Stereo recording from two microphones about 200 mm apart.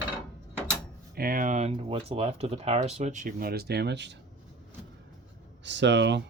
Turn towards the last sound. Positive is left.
turn(degrees=-60)  # may be behind; listen again after turning